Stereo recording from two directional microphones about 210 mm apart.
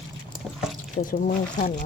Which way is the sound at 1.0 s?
40° left (ahead or behind).